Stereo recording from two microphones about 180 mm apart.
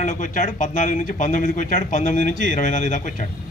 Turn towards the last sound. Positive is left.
turn(degrees=45)  # may be behind; listen again after turning